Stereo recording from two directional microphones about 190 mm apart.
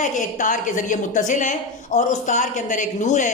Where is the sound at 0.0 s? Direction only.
40° left (ahead or behind).